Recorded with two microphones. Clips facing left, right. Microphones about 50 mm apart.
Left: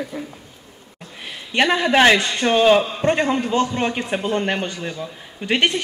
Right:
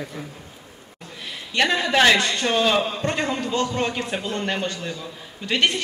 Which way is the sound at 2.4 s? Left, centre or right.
Left.